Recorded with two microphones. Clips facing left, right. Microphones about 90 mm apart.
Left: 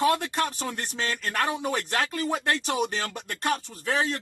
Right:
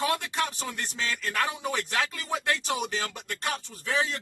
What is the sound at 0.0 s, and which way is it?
Speech, 45° left (ahead or behind).